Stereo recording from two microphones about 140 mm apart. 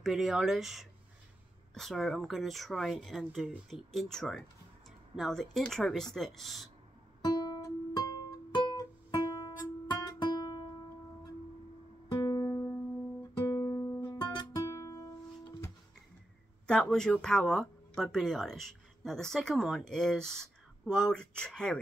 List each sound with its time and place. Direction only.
0.0 s speech: centre (ahead or behind)
7.2 s music: 30° left (ahead or behind)
12.1 s music: 30° left (ahead or behind)
16.6 s speech: 5° left (ahead or behind)